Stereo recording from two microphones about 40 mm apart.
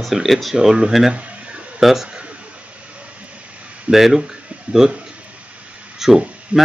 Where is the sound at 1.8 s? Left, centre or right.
Centre.